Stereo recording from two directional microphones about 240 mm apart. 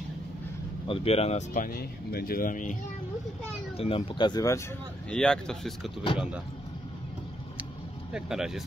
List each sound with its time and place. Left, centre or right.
0.8 s speech: left
5.1 s speech: centre
8.1 s speech: centre